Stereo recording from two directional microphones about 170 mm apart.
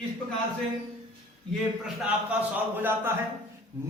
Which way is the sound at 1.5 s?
Centre (ahead or behind).